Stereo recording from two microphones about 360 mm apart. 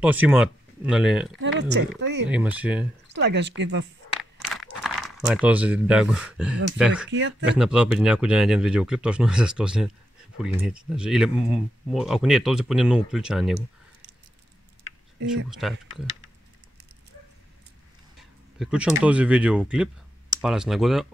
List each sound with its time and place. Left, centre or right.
0.0 s speech: centre
1.4 s speech: right
2.2 s speech: centre
3.2 s speech: right
4.6 s speech: centre
7.1 s speech: right
7.4 s speech: centre
15.6 s speech: centre
18.6 s speech: centre